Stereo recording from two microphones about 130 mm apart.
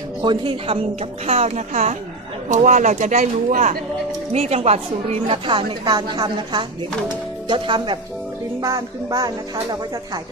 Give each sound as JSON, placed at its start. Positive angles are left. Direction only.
{"t": 0.2, "sound": "speech", "side_deg": -40}
{"t": 1.2, "sound": "a woman's voice", "side_deg": -55}
{"t": 8.5, "sound": "music", "side_deg": -30}